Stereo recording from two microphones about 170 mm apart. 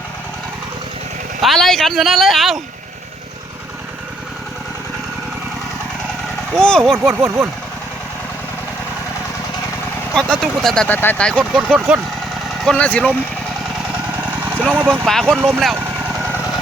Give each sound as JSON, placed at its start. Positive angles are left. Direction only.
{"t": 1.4, "sound": "speech", "side_deg": 0}
{"t": 6.5, "sound": "speech", "side_deg": 5}
{"t": 6.9, "sound": "speech", "side_deg": -15}
{"t": 10.2, "sound": "speech", "side_deg": 5}
{"t": 13.9, "sound": "vehicle", "side_deg": -10}
{"t": 15.0, "sound": "speech", "side_deg": 5}
{"t": 15.4, "sound": "speech", "side_deg": -15}
{"t": 15.7, "sound": "vehicle", "side_deg": -10}